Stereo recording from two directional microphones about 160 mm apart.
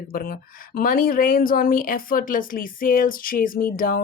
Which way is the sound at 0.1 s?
70° left (ahead or behind).